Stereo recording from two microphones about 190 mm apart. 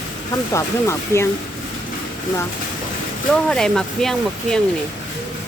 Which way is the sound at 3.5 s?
5° left (ahead or behind).